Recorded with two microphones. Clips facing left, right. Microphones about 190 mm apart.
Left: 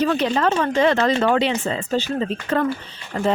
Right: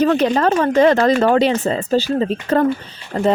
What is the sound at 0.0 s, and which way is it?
Speech, 45° right (ahead or behind).